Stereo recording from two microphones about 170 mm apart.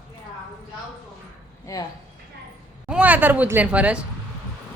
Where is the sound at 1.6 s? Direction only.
20° left (ahead or behind).